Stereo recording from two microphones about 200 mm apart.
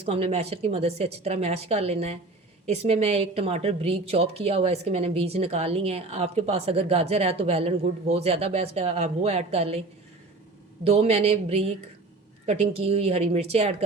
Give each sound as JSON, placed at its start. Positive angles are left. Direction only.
{"t": 0.0, "sound": "speech", "side_deg": -30}
{"t": 10.8, "sound": "speech", "side_deg": -30}